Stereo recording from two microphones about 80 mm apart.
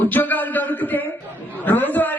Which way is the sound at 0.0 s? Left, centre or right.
Left.